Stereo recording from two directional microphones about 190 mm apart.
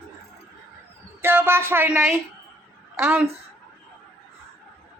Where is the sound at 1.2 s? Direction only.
10° right (ahead or behind).